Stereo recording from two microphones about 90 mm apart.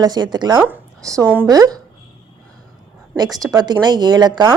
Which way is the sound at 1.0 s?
40° right (ahead or behind).